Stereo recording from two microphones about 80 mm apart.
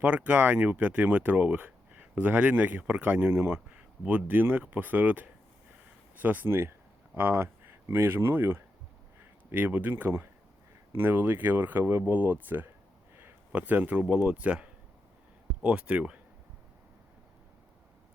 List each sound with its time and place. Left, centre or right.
0.0 s speech: centre
3.7 s speech: centre